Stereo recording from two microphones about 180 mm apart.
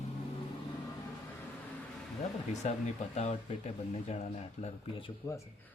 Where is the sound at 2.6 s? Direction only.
40° left (ahead or behind).